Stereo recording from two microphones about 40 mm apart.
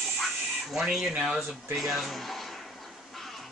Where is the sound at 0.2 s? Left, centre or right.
Centre.